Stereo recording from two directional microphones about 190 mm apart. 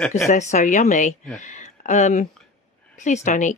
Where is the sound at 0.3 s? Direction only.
40° left (ahead or behind).